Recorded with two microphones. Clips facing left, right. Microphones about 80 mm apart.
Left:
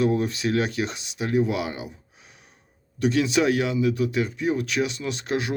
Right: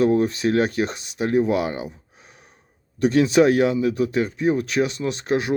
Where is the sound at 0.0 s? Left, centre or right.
Right.